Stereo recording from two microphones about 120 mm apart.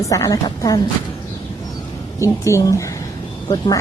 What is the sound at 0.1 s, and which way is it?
Speech, 30° left (ahead or behind).